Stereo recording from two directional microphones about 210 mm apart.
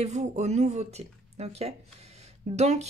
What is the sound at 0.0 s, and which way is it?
Speech, 30° right (ahead or behind).